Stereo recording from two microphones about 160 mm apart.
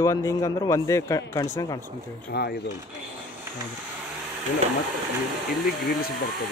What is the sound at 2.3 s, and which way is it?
Speech, 80° left.